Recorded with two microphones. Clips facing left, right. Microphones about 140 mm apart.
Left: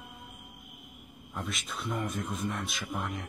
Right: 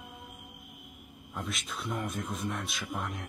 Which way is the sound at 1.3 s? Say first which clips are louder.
Even; centre (ahead or behind).